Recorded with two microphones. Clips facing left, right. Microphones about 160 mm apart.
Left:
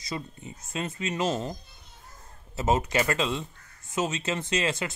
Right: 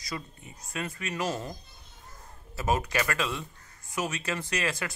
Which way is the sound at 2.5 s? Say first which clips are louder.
Left 3 dB; 25° left (ahead or behind).